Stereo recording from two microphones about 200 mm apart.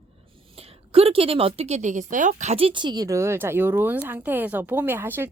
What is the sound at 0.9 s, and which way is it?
A woman's voice, 30° right (ahead or behind).